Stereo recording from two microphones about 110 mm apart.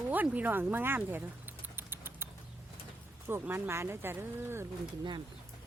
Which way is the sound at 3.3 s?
20° right (ahead or behind).